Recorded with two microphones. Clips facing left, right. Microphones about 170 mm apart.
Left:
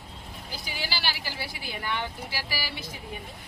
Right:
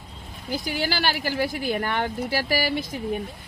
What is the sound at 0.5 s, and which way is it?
Speech, 50° right (ahead or behind).